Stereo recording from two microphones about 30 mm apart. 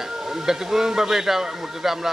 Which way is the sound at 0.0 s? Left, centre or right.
Centre.